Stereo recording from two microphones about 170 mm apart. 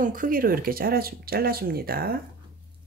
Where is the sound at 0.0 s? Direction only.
55° right (ahead or behind).